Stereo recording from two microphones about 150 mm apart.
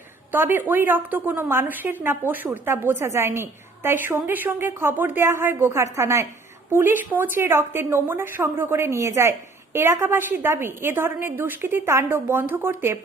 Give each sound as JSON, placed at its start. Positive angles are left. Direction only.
{"t": 0.3, "sound": "a woman's voice", "side_deg": -15}